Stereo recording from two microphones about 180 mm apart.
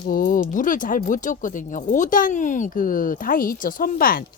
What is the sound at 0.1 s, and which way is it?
Speech, 50° left (ahead or behind).